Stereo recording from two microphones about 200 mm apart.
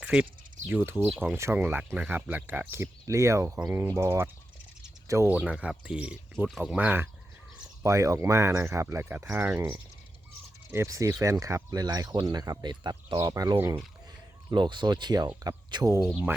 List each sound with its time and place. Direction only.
0.0 s speech: 5° right (ahead or behind)